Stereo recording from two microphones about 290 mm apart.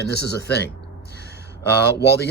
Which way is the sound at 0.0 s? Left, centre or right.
Left.